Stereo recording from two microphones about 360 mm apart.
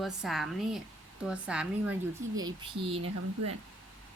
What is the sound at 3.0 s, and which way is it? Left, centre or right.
Speech, right.